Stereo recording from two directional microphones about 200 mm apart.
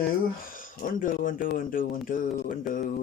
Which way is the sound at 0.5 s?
45° left (ahead or behind).